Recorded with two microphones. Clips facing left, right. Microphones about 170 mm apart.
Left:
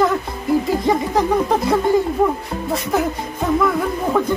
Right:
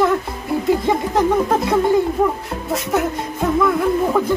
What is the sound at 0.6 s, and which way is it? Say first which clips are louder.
Speech: right 1 dB; centre (ahead or behind).